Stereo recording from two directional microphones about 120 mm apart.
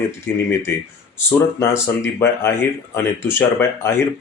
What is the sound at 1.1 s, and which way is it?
Speech, 20° left (ahead or behind).